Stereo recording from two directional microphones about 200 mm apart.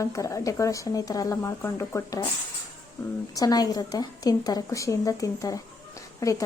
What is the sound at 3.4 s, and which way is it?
Speech, 20° left (ahead or behind).